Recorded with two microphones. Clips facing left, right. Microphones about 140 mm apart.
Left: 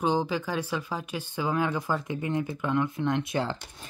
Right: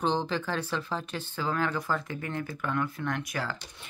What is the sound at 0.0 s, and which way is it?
Speech, 10° left (ahead or behind).